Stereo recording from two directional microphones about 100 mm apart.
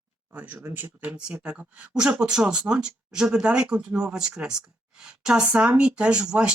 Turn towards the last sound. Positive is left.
turn(degrees=-10)  # may be behind; listen again after turning